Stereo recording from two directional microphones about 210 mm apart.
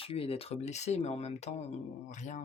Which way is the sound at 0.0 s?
25° left (ahead or behind).